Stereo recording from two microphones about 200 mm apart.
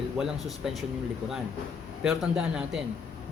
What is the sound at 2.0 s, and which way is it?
Speech, 5° right (ahead or behind).